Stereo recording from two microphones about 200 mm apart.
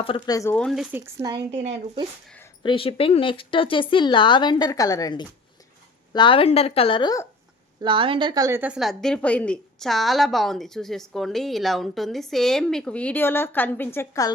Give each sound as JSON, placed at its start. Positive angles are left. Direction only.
{"t": 0.0, "sound": "speech", "side_deg": 20}
{"t": 0.5, "sound": "a woman's voice", "side_deg": 0}
{"t": 1.5, "sound": "speech", "side_deg": -30}
{"t": 2.6, "sound": "speech", "side_deg": 25}
{"t": 7.8, "sound": "a woman's voice", "side_deg": -25}